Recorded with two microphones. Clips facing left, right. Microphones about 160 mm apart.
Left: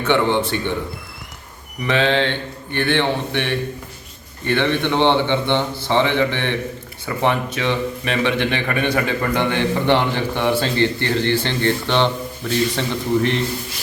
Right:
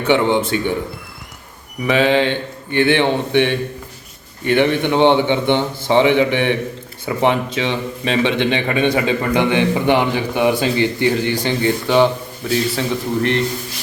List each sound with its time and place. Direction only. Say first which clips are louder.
0.1 s a man's voice: right 3 dB; 15° right (ahead or behind)
1.9 s a man's voice: right 3 dB; 10° right (ahead or behind)